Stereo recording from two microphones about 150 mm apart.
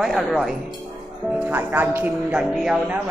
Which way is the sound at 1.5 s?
15° right (ahead or behind).